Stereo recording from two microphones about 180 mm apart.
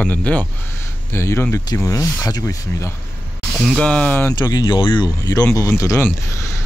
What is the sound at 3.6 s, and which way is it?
Speech, 5° left (ahead or behind).